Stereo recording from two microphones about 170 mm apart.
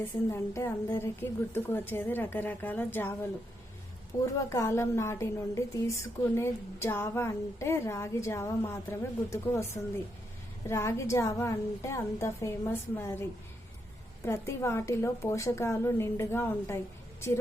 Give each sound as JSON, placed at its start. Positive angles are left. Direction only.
{"t": 0.0, "sound": "a woman's voice", "side_deg": 15}
{"t": 4.4, "sound": "a woman's voice", "side_deg": 15}
{"t": 14.3, "sound": "a woman's voice", "side_deg": 15}